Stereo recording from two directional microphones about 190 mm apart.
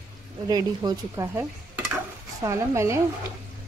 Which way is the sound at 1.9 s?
15° right (ahead or behind).